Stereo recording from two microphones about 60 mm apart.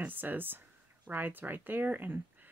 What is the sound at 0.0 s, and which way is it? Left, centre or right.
Speech, right.